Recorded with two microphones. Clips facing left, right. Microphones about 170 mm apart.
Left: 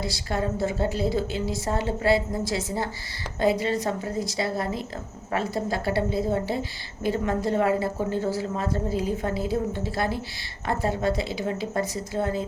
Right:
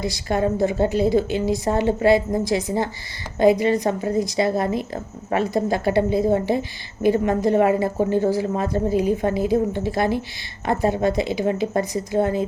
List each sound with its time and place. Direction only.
0.0 s a woman's voice: 20° right (ahead or behind)